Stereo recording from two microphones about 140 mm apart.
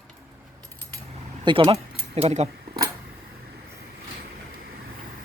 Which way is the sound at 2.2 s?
50° right (ahead or behind).